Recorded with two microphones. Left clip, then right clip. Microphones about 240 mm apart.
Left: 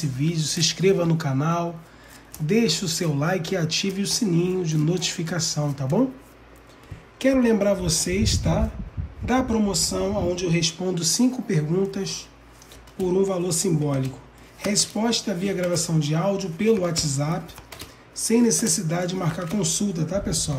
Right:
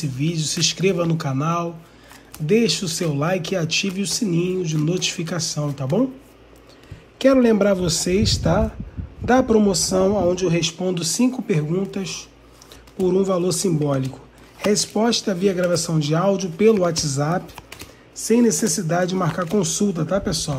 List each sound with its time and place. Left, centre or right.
0.0 s speech: centre
7.2 s speech: centre
10.7 s speech: centre
13.0 s speech: centre
17.6 s typing: centre
18.7 s speech: centre
20.0 s speech: centre